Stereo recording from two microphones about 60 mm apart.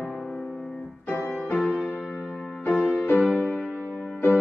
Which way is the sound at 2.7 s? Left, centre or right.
Left.